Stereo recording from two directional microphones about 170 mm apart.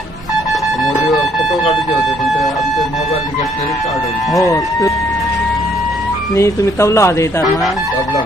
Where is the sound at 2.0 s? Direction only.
Centre (ahead or behind).